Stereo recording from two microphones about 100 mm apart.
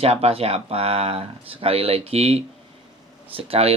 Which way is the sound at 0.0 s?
85° right.